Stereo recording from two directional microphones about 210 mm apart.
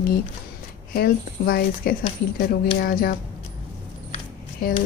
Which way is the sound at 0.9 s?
45° left (ahead or behind).